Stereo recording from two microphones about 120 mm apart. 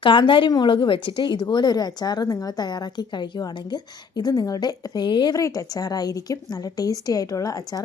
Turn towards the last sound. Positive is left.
turn(degrees=30)  # may be behind; listen again after turning